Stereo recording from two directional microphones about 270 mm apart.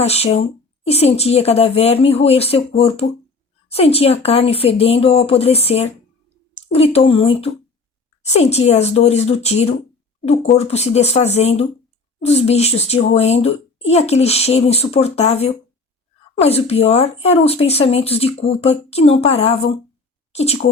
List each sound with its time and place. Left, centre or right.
0.0 s a child's voice: left